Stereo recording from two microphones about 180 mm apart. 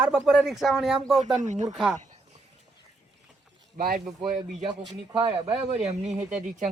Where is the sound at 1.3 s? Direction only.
40° right (ahead or behind).